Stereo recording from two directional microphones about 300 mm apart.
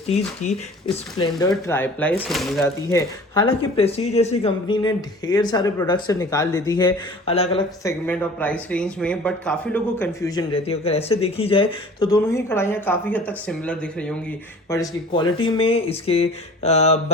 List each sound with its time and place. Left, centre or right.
0.1 s a man's voice: left; by 3.0 s centre
3.3 s a man's voice: centre
8.0 s a man's voice: centre; by 17.0 s left